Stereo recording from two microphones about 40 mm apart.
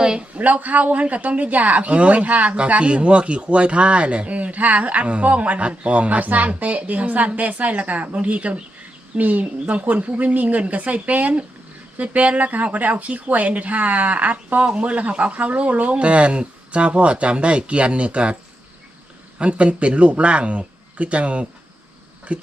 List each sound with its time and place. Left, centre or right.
0.2 s speech: right
19.4 s speech: right